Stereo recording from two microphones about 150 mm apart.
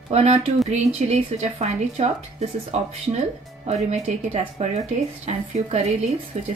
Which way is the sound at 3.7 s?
50° right (ahead or behind).